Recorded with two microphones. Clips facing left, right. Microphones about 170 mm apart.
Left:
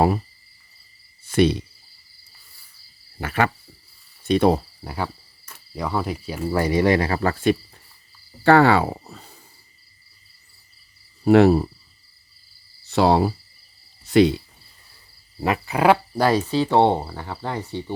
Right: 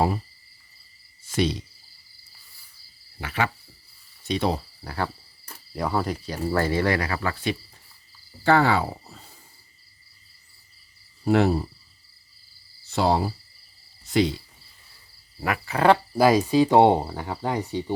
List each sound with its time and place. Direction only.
1.3 s speech: 60° left (ahead or behind)
3.2 s speech: 50° left (ahead or behind)
5.7 s speech: centre (ahead or behind); by 7.5 s 40° left (ahead or behind)
8.4 s speech: 65° left (ahead or behind)
11.3 s speech: 65° left (ahead or behind)
12.9 s speech: 70° left (ahead or behind)
14.0 s cricket: 65° left (ahead or behind)
15.4 s frog: 25° left (ahead or behind)
16.1 s speech: 10° right (ahead or behind)